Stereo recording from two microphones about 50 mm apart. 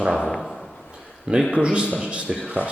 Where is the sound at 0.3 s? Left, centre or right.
Centre.